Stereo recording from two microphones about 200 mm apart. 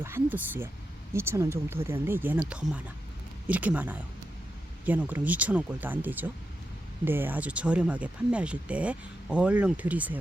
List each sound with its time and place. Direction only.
0.0 s speech: 10° right (ahead or behind)